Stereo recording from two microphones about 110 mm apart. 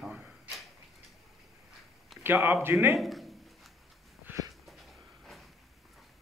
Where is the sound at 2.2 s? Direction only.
20° right (ahead or behind).